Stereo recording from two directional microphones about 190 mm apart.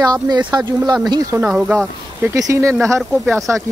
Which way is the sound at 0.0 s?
20° right (ahead or behind).